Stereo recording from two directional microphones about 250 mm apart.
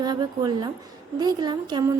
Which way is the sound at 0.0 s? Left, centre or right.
Centre.